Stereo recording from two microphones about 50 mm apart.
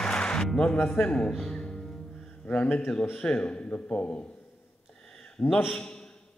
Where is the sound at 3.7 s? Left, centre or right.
Left.